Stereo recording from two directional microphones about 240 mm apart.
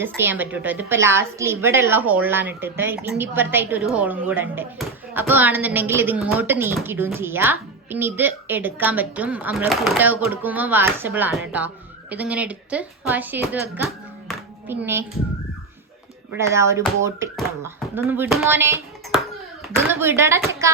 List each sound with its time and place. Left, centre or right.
0.2 s a woman's voice: centre
14.3 s a sound: centre
16.3 s a woman's voice: centre